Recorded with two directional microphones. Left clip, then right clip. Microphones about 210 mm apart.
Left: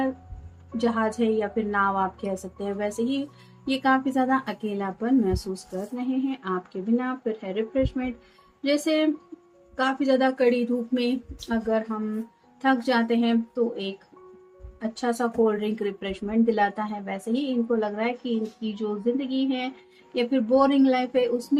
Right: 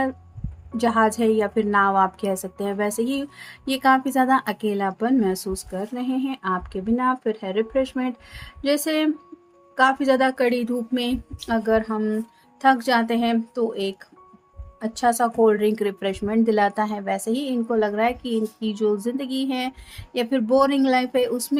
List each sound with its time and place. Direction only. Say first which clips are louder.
0.8 s a woman's voice: right 5 dB; 55° right (ahead or behind)